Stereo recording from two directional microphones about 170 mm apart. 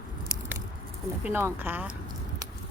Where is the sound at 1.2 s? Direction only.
15° right (ahead or behind).